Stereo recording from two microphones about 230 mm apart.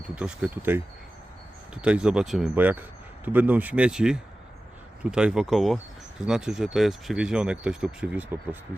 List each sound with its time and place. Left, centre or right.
0.2 s speech: centre